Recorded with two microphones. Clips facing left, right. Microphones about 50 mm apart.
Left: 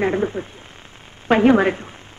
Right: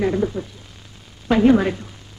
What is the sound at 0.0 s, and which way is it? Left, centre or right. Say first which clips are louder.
A woman's voice: even; left.